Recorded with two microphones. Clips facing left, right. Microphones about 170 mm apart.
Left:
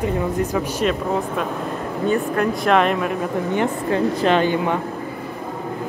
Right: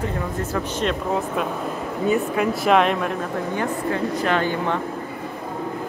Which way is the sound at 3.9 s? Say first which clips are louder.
Left 5 dB; 25° left (ahead or behind).